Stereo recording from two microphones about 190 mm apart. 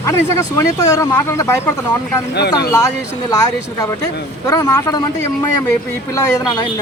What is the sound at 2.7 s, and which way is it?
Speech, 15° left (ahead or behind).